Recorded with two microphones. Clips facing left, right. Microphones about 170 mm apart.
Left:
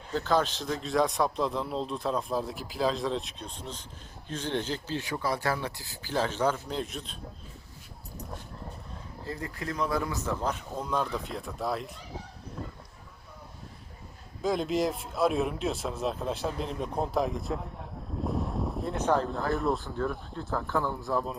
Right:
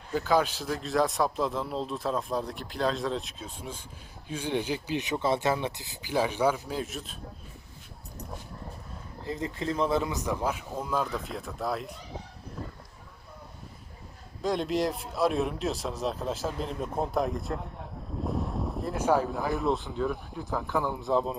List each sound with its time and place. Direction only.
0.1 s speech: 10° right (ahead or behind)
9.2 s speech: 20° right (ahead or behind); by 11.9 s centre (ahead or behind)
14.4 s speech: centre (ahead or behind)
18.3 s wind: centre (ahead or behind)
19.5 s speech: centre (ahead or behind)
19.8 s speech: 15° right (ahead or behind)